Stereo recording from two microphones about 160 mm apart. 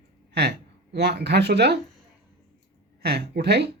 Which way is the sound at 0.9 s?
90° right.